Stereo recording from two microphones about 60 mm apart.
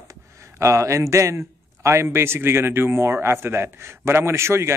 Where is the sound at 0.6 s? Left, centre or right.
Right.